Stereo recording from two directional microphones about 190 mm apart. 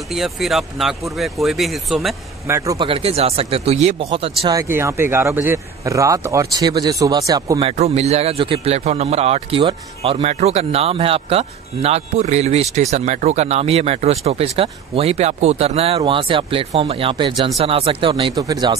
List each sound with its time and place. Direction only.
0.1 s speech: centre (ahead or behind)
2.4 s speech: 15° right (ahead or behind)
2.9 s a man's voice: 30° right (ahead or behind)
4.6 s speech: 15° right (ahead or behind)
7.6 s a man's voice: 35° right (ahead or behind); by 18.8 s 20° right (ahead or behind)